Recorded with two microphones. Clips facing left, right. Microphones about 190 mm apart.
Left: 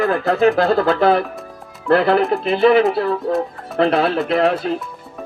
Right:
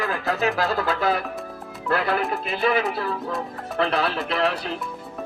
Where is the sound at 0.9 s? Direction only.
35° left (ahead or behind).